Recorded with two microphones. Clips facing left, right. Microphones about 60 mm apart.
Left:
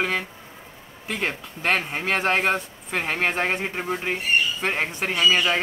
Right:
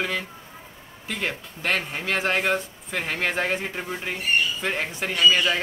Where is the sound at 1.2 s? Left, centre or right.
Left.